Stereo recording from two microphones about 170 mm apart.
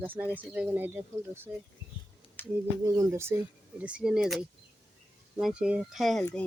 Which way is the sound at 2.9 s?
20° right (ahead or behind).